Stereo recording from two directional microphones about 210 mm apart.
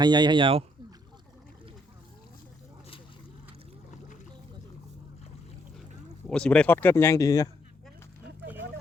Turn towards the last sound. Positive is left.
turn(degrees=15)  # may be behind; listen again after turning